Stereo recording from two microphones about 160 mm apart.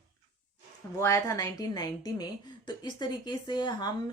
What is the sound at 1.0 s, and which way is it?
A woman's voice, 20° left (ahead or behind).